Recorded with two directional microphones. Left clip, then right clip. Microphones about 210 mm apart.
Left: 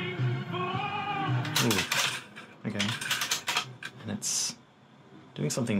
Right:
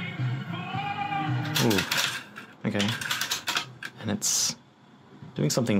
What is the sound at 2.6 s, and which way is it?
Speech, 40° right (ahead or behind).